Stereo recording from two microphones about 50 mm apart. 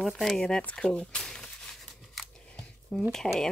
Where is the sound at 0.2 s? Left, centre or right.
Centre.